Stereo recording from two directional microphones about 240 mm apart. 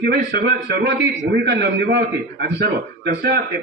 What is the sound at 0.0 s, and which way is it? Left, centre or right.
A man's voice, right.